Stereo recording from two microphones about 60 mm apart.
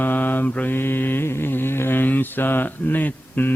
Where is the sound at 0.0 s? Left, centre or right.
Left.